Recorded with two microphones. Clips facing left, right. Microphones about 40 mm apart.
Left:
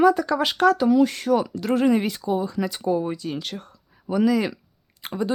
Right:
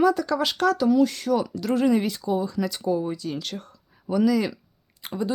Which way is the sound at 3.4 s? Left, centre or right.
Centre.